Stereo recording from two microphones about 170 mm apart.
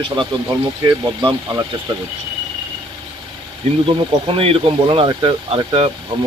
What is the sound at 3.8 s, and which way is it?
Speech, 35° right (ahead or behind).